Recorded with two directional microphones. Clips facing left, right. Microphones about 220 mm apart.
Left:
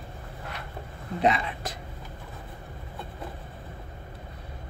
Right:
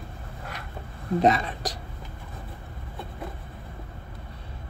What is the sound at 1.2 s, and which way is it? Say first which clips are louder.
Speech: right 2 dB; 40° right (ahead or behind).